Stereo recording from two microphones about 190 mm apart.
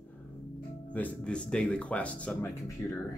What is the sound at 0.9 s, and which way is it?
Speech, 5° left (ahead or behind).